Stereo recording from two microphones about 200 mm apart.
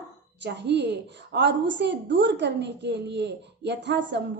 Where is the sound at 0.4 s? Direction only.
60° right (ahead or behind).